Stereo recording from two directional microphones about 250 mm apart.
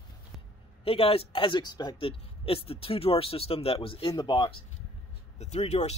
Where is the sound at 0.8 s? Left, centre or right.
Left.